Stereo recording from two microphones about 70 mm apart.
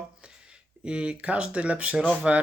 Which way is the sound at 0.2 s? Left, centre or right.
Centre.